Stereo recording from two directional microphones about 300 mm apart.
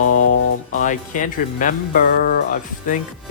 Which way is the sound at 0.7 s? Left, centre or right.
Left.